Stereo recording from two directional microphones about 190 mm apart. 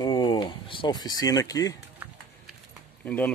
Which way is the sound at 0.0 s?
25° left (ahead or behind).